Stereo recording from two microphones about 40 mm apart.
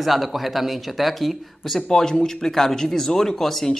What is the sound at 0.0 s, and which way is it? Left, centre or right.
Speech, centre.